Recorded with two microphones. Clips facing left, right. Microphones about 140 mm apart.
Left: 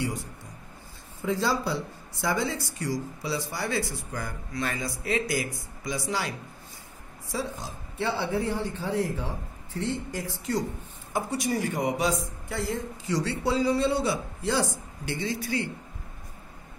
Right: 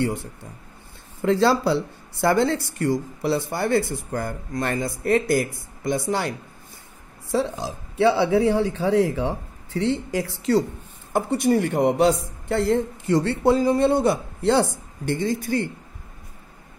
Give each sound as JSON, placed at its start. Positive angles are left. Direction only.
{"t": 1.2, "sound": "speech", "side_deg": -70}
{"t": 7.2, "sound": "a man's voice", "side_deg": -70}
{"t": 11.1, "sound": "speech", "side_deg": -60}